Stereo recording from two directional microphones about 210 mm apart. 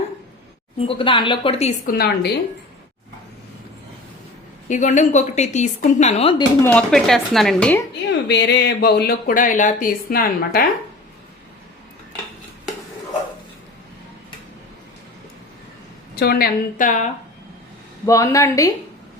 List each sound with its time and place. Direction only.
0.8 s speech: 25° left (ahead or behind)
1.9 s speech: 45° left (ahead or behind)
4.7 s a woman's voice: 35° left (ahead or behind)
6.6 s speech: 5° left (ahead or behind)
8.3 s speech: 55° left (ahead or behind)
16.1 s speech: 50° left (ahead or behind)
18.0 s speech: 15° left (ahead or behind)